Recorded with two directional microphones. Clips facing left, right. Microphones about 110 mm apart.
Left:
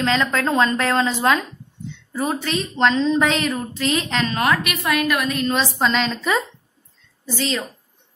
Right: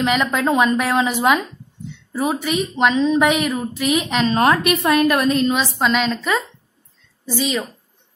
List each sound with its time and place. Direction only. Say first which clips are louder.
0.0 s a woman's voice: right 2 dB; 15° right (ahead or behind)
4.3 s a woman's voice: right 7 dB; 30° right (ahead or behind)
5.5 s a woman's voice: right 1 dB; 5° right (ahead or behind)
7.3 s a woman's voice: right 3 dB; 15° right (ahead or behind)